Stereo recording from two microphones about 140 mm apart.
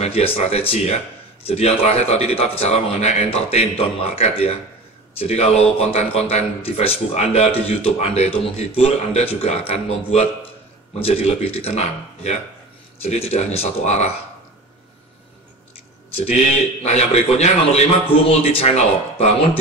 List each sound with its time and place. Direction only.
0.0 s speech: 50° left (ahead or behind)
16.2 s speech: 50° left (ahead or behind)